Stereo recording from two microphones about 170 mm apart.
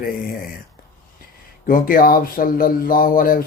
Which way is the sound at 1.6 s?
55° left (ahead or behind).